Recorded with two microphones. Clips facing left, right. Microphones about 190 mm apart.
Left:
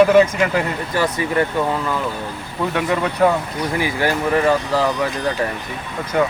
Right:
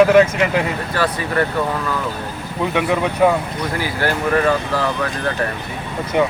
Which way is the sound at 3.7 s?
15° left (ahead or behind).